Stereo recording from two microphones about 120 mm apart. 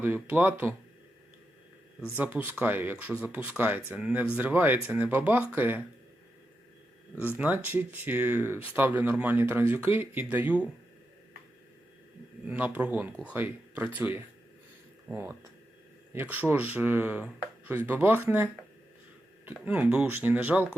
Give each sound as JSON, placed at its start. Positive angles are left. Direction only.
{"t": 0.0, "sound": "speech", "side_deg": -15}
{"t": 2.1, "sound": "speech", "side_deg": -15}
{"t": 7.3, "sound": "speech", "side_deg": -15}
{"t": 12.5, "sound": "speech", "side_deg": -10}
{"t": 19.5, "sound": "speech", "side_deg": -10}